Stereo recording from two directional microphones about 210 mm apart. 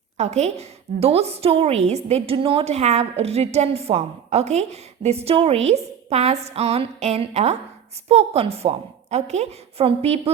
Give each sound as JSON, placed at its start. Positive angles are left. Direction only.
{"t": 0.2, "sound": "a woman's voice", "side_deg": -30}